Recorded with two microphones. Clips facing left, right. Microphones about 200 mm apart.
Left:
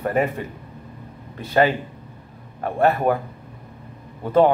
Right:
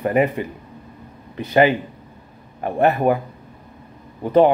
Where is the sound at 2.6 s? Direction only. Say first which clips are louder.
Right 2 dB; 15° right (ahead or behind).